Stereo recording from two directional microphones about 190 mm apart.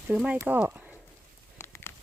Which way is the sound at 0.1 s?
5° right (ahead or behind).